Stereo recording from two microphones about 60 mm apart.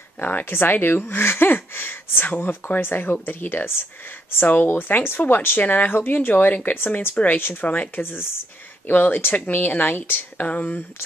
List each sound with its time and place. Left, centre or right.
0.2 s speech: left
7.6 s speech: left
8.0 s speech: left
10.4 s speech: left